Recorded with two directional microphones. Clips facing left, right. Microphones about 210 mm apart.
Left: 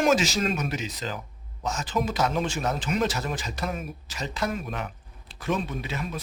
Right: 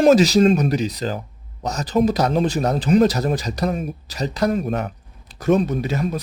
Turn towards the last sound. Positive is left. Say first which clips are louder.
# right 10 dB
turn(degrees=-40)  # may be behind; listen again after turning